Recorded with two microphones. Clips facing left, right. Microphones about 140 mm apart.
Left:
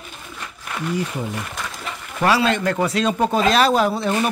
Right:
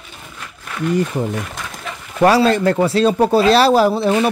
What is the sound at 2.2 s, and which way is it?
Speech, 35° right (ahead or behind).